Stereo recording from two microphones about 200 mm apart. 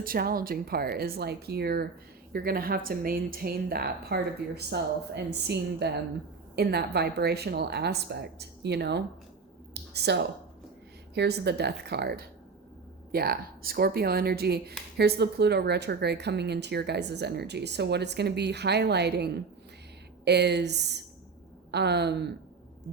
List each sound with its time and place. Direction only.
0.0 s a woman's voice: 45° right (ahead or behind)